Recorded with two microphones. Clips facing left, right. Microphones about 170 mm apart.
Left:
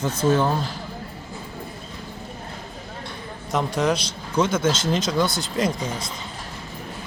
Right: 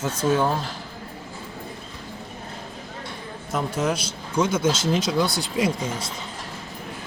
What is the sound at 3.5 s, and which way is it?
A man's voice, 5° right (ahead or behind).